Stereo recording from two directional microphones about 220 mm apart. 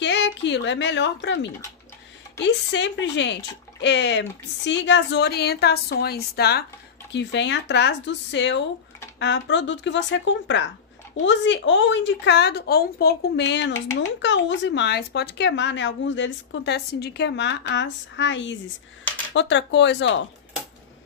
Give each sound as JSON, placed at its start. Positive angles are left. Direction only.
{"t": 0.0, "sound": "speech", "side_deg": 50}